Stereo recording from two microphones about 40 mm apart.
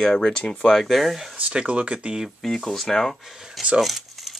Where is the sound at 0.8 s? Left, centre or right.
Centre.